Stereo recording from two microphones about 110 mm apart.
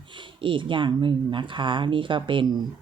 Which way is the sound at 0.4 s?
50° right (ahead or behind).